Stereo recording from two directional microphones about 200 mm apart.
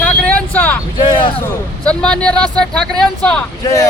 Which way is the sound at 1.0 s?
25° left (ahead or behind).